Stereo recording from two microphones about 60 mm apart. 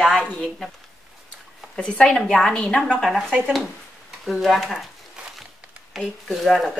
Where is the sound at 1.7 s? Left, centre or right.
Centre.